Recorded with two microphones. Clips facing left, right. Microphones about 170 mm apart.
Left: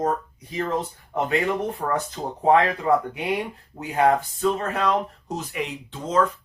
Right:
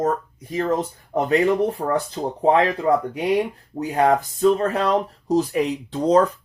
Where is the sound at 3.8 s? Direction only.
40° right (ahead or behind).